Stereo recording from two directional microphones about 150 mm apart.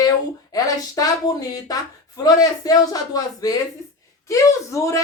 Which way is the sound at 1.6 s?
25° left (ahead or behind).